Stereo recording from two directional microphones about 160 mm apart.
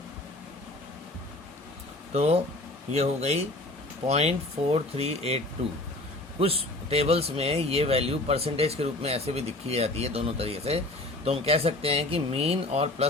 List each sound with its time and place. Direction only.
2.1 s speech: 40° right (ahead or behind)
6.4 s speech: 40° right (ahead or behind)